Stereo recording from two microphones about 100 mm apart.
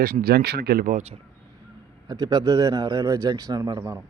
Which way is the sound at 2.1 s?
40° right (ahead or behind).